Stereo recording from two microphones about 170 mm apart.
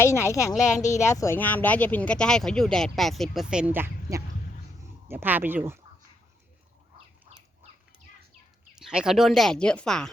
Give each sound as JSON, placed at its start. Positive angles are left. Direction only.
{"t": 0.0, "sound": "a woman's voice", "side_deg": 15}
{"t": 8.7, "sound": "speech", "side_deg": -5}